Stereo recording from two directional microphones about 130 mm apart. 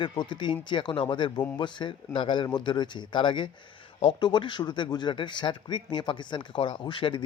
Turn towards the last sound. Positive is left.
turn(degrees=40)  # may be behind; listen again after turning